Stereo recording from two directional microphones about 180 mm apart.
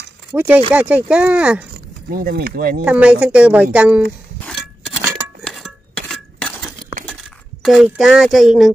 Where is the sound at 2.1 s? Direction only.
55° right (ahead or behind).